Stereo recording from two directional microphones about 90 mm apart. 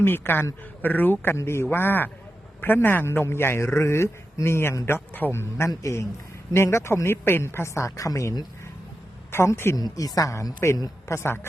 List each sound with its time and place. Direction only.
0.0 s a man's voice: 25° left (ahead or behind)
9.7 s a woman's voice: 45° left (ahead or behind); by 11.3 s 30° left (ahead or behind)